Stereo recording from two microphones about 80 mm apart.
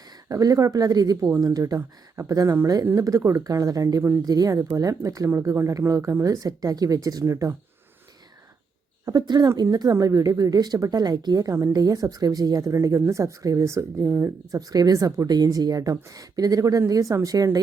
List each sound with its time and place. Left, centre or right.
0.3 s a woman's voice: right
9.0 s a woman's voice: right
12.7 s speech: right
14.5 s a woman's voice: right